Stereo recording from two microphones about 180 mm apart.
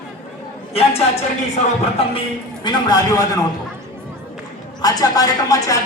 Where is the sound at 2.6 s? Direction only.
25° left (ahead or behind).